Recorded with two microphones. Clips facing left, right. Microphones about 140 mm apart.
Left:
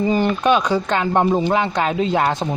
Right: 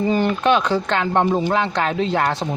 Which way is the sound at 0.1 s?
10° left (ahead or behind).